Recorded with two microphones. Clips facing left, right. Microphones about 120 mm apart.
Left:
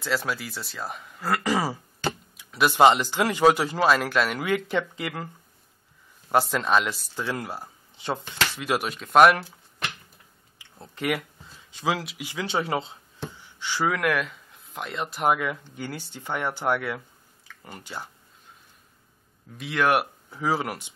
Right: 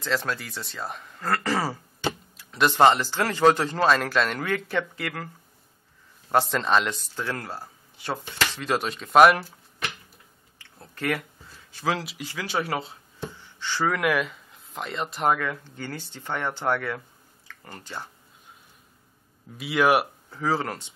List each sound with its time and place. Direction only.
0.0 s speech: 5° left (ahead or behind)
6.2 s speech: 5° left (ahead or behind)
7.3 s speech: 15° left (ahead or behind); by 9.6 s centre (ahead or behind)
10.6 s a sound: 15° left (ahead or behind)
11.7 s speech: 15° left (ahead or behind)
13.4 s a sound: 15° left (ahead or behind)
13.9 s a man's voice: centre (ahead or behind)
15.3 s speech: 10° left (ahead or behind)
19.5 s speech: 5° right (ahead or behind)
20.2 s speech: 10° left (ahead or behind)